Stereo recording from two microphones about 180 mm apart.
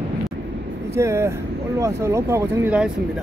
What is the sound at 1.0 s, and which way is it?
Speech, 15° right (ahead or behind).